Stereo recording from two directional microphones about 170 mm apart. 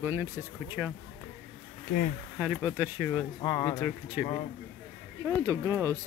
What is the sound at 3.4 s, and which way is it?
Speech, 25° left (ahead or behind).